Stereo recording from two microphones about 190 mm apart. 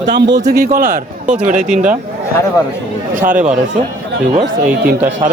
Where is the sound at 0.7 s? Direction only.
50° right (ahead or behind).